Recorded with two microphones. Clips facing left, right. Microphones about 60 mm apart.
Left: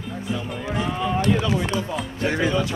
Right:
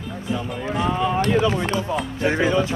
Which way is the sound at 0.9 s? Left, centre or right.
Centre.